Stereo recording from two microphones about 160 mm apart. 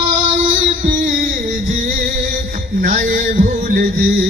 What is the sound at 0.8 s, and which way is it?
Music, 55° right (ahead or behind).